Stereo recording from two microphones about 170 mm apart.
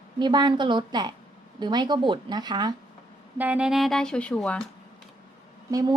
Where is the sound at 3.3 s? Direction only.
10° right (ahead or behind).